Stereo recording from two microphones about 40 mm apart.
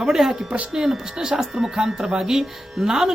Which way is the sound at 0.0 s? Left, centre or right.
Centre.